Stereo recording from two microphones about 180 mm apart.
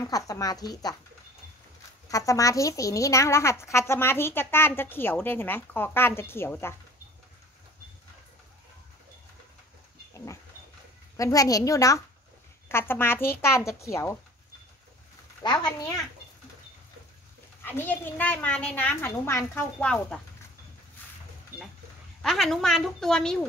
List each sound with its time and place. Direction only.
0.0 s speech: 20° left (ahead or behind)
2.0 s speech: 20° left (ahead or behind)
11.1 s speech: 20° left (ahead or behind)
15.4 s speech: 25° left (ahead or behind)
17.6 s speech: 10° left (ahead or behind)
22.2 s a woman's voice: centre (ahead or behind)